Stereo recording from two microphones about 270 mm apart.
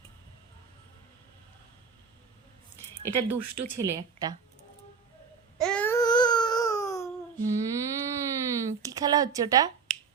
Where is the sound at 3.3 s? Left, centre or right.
Right.